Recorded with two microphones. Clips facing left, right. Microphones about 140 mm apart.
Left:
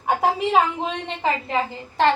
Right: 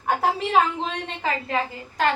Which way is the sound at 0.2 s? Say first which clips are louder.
Left 2 dB; 15° left (ahead or behind).